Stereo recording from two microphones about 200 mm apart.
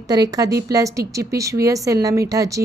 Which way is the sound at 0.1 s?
20° right (ahead or behind).